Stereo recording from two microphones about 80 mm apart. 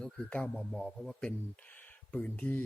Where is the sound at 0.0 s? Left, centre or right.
Centre.